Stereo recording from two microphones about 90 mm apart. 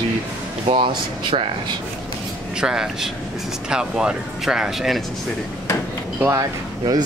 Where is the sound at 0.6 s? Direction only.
85° right.